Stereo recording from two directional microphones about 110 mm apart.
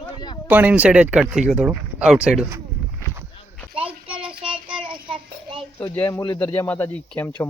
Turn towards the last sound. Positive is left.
turn(degrees=15)  # may be behind; listen again after turning